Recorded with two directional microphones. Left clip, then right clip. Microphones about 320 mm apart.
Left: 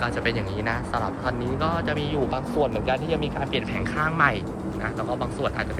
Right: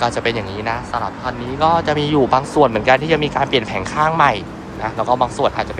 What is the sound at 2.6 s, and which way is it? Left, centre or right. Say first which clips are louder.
Speech: right 10 dB; right.